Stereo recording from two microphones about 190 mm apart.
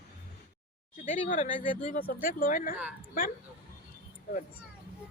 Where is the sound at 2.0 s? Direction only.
50° left (ahead or behind).